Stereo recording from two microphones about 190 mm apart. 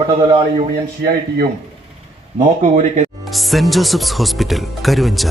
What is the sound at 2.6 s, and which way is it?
Speech, 40° right (ahead or behind).